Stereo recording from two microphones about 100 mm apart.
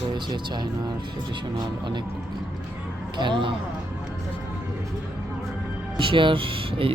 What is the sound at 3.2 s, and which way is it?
Speech, 55° right (ahead or behind).